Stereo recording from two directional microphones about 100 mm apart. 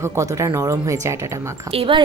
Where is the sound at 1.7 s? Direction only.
65° right (ahead or behind).